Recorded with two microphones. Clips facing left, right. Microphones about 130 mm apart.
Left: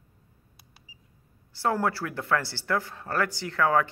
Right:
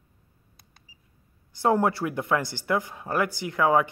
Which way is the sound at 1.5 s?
20° right (ahead or behind).